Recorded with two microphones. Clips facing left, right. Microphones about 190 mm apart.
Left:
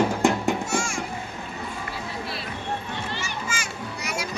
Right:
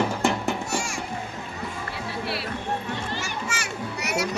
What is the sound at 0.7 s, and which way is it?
Music, 35° right (ahead or behind).